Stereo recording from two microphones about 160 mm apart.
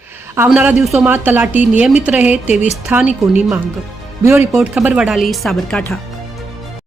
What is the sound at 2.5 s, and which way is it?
Speech, 45° left (ahead or behind).